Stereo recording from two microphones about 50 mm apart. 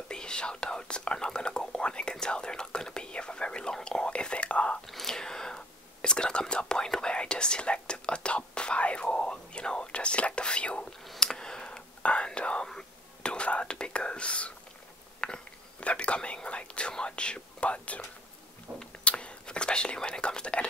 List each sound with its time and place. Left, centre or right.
0.1 s whispering: centre
4.8 s whispering: centre
6.5 s speech: centre
10.9 s whispering: centre
16.4 s speech: left
18.7 s a sound: centre
19.0 s whispering: left